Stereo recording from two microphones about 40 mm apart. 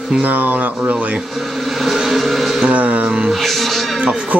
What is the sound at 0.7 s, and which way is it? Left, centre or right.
Speech, right.